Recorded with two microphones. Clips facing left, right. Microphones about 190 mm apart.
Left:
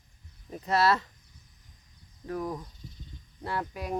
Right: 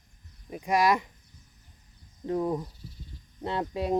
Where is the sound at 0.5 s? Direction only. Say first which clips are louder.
Right 1 dB; 10° right (ahead or behind).